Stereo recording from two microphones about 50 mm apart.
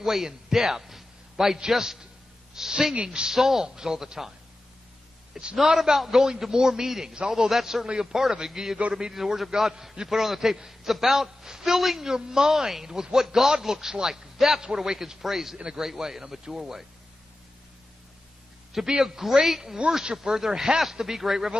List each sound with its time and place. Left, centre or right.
0.0 s a man's voice: centre
5.6 s a man's voice: centre
18.7 s a man's voice: centre